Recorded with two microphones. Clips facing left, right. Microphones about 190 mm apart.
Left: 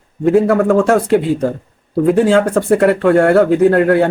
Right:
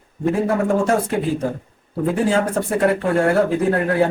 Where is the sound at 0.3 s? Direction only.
70° left (ahead or behind).